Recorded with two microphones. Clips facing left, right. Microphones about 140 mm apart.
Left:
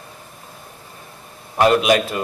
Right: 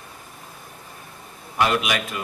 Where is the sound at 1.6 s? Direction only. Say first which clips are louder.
Left 7 dB; 40° left (ahead or behind).